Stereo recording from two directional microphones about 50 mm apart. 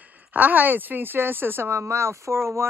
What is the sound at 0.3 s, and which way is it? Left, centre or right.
Speech, right.